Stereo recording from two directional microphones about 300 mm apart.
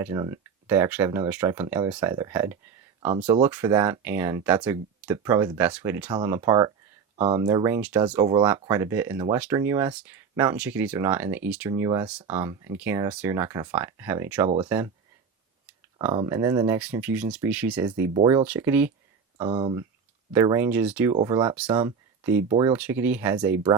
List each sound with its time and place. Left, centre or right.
0.0 s speech: centre